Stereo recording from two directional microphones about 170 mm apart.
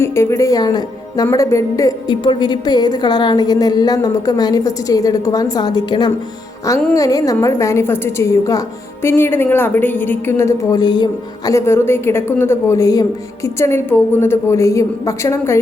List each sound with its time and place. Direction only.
0.0 s a woman's voice: 15° left (ahead or behind)